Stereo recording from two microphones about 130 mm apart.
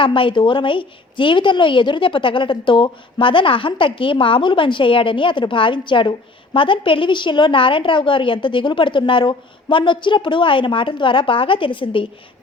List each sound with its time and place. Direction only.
0.0 s a woman's voice: 40° left (ahead or behind)